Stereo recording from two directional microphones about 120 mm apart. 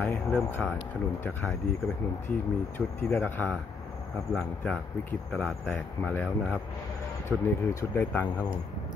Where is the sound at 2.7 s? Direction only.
15° left (ahead or behind).